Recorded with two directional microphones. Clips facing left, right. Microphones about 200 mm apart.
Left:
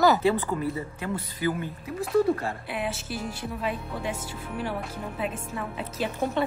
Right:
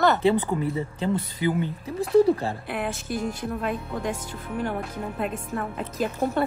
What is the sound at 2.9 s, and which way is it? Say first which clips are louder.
Speech: right 5 dB; 5° left (ahead or behind).